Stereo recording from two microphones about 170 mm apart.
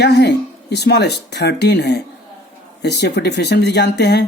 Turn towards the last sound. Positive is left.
turn(degrees=80)